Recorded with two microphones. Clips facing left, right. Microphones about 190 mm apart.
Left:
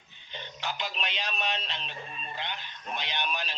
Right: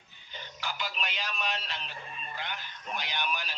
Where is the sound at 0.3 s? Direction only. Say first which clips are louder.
Left 3 dB; 20° left (ahead or behind).